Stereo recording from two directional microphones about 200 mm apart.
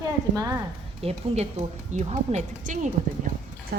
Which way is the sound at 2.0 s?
35° right (ahead or behind).